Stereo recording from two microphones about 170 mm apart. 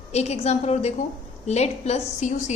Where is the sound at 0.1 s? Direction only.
40° left (ahead or behind).